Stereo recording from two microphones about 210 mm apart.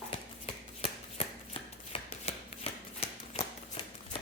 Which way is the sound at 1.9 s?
30° left (ahead or behind).